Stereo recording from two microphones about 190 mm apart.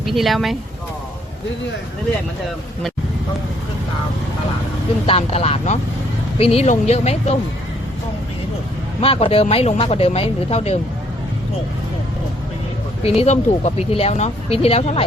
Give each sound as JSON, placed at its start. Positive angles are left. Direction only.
{"t": 0.0, "sound": "speech", "side_deg": 0}
{"t": 5.0, "sound": "speech", "side_deg": 30}
{"t": 9.0, "sound": "speech", "side_deg": 30}
{"t": 13.0, "sound": "speech", "side_deg": 30}